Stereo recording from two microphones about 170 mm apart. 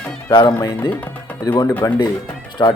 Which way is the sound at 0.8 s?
10° left (ahead or behind).